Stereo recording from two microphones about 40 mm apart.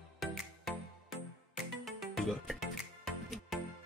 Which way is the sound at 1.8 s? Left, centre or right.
Centre.